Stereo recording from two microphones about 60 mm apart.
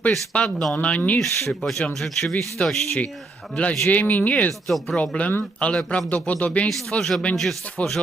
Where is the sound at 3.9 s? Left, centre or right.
Left.